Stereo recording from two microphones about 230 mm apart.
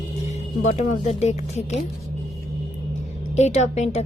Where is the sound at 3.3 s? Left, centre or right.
Left.